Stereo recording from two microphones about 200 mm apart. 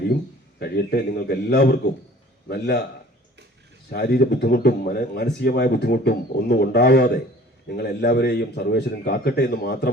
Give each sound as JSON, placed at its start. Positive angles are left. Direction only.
{"t": 0.6, "sound": "speech", "side_deg": 50}
{"t": 3.8, "sound": "speech", "side_deg": 50}